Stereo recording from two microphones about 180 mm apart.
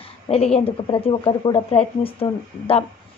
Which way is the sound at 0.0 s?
35° left (ahead or behind).